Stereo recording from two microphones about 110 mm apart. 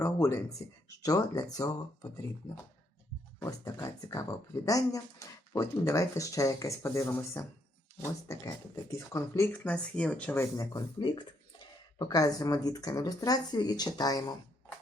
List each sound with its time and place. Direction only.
0.0 s a sound: 25° left (ahead or behind)
1.0 s speech: 35° left (ahead or behind)
3.4 s speech: 30° left (ahead or behind)
9.5 s speech: 10° left (ahead or behind)
10.3 s speech: 25° left (ahead or behind)
10.8 s speech: 45° left (ahead or behind)